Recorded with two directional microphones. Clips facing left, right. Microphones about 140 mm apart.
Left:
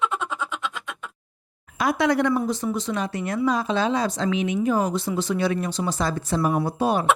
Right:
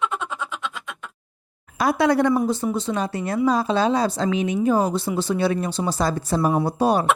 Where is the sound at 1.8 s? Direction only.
35° right (ahead or behind).